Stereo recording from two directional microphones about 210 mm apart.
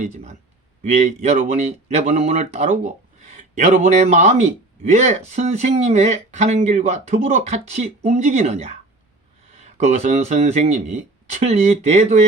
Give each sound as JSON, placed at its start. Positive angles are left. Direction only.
{"t": 0.0, "sound": "speech", "side_deg": -30}